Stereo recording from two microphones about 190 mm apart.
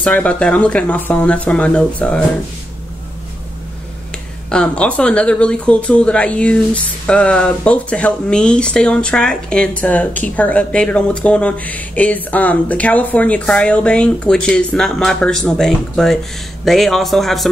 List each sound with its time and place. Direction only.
0.0 s speech: 5° left (ahead or behind)
4.5 s speech: 5° left (ahead or behind)